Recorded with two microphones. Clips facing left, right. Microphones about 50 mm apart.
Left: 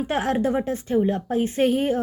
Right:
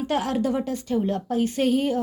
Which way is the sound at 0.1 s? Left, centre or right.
Left.